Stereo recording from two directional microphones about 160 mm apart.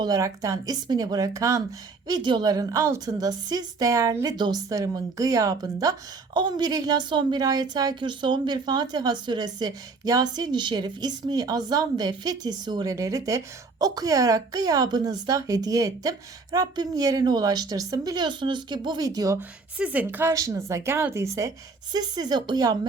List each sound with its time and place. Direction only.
0.0 s a woman's voice: 20° right (ahead or behind)
19.4 s a woman's voice: 10° right (ahead or behind); by 22.9 s 25° right (ahead or behind)